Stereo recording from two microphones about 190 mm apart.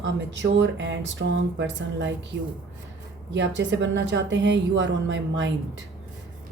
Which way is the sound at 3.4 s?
70° right (ahead or behind).